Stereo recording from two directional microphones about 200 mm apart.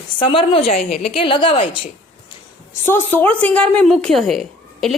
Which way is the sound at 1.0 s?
30° left (ahead or behind).